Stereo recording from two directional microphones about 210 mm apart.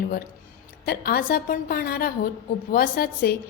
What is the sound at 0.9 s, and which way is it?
A woman's voice, 45° left (ahead or behind).